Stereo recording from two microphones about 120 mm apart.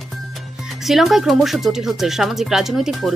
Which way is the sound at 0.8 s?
Centre (ahead or behind).